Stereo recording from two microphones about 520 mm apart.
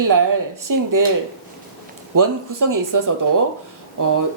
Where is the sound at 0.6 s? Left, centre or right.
Right.